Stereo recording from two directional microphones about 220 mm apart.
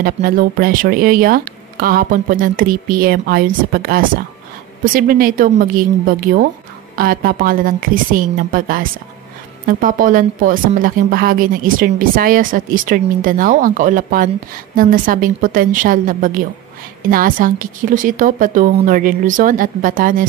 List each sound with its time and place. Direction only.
0.0 s a woman's voice: 40° right (ahead or behind)